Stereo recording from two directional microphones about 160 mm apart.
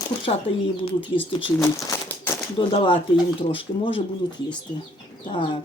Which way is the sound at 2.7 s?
35° left (ahead or behind).